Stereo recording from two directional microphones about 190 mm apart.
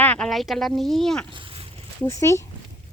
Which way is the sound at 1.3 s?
25° right (ahead or behind).